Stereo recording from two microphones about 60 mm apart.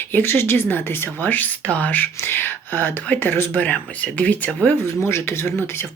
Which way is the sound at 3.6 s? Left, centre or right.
Left.